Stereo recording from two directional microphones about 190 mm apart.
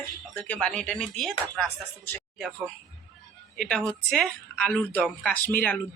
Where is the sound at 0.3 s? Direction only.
10° left (ahead or behind).